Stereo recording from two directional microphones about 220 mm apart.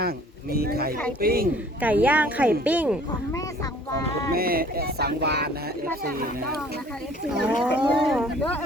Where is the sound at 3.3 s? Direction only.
15° left (ahead or behind).